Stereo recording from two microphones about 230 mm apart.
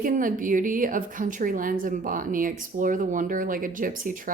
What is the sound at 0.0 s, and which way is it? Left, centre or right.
A woman's voice, right.